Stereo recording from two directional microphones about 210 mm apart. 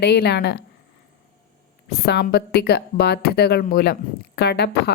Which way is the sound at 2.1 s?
50° left (ahead or behind).